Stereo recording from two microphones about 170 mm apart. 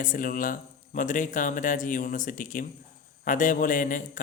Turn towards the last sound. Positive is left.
turn(degrees=50)  # may be behind; listen again after turning